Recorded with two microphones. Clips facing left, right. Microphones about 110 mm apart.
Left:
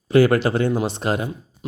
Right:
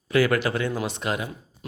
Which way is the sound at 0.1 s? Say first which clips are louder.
Left 6 dB; 30° left (ahead or behind).